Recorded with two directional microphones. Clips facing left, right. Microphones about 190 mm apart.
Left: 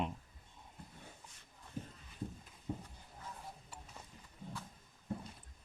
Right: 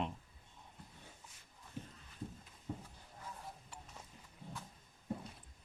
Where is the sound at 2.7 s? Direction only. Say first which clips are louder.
Left 2 dB; 15° left (ahead or behind).